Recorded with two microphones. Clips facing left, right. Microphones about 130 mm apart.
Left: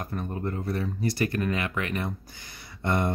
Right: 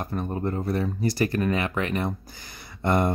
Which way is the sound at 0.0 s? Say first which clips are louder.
Right 4 dB; 30° right (ahead or behind).